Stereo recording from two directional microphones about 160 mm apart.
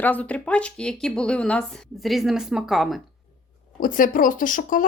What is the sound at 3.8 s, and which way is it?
Speech, 55° left (ahead or behind).